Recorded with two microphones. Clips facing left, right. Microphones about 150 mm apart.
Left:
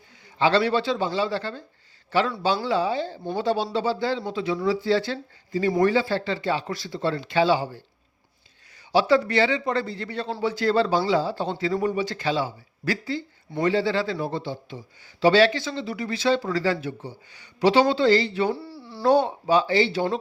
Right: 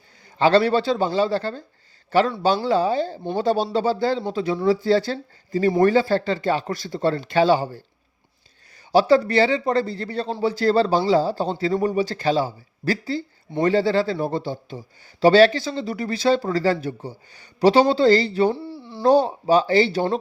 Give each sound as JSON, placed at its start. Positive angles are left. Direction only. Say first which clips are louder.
{"t": 0.3, "sound": "a man's voice", "louder": "right 4 dB", "side_deg": -45}
{"t": 8.9, "sound": "speech", "louder": "right 4 dB", "side_deg": -40}
{"t": 18.5, "sound": "a sound", "louder": "right 3 dB", "side_deg": -20}
{"t": 19.0, "sound": "speech", "louder": "right 3 dB", "side_deg": -35}